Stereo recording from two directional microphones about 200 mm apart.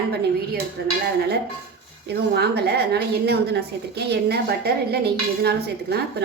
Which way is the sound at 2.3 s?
55° right (ahead or behind).